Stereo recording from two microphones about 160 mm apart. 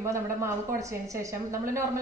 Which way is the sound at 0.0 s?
20° right (ahead or behind).